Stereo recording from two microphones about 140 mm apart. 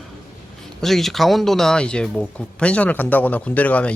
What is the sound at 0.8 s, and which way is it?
Speech, centre (ahead or behind).